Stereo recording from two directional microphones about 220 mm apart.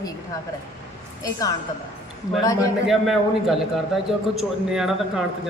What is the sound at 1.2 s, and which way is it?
Speech, 15° left (ahead or behind).